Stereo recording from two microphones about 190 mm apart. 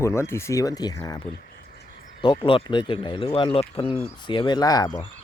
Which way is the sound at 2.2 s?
25° left (ahead or behind).